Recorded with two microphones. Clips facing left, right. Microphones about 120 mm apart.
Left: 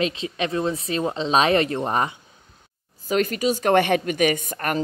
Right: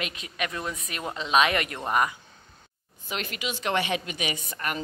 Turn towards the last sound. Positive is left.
turn(degrees=45)  # may be behind; listen again after turning